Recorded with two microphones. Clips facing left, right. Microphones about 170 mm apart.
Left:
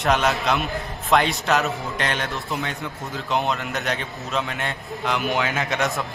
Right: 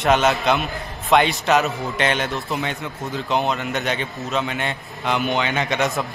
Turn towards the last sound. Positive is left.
turn(degrees=0)  # may be behind; listen again after turning